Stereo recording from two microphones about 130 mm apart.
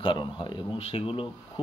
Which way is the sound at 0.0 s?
40° left (ahead or behind).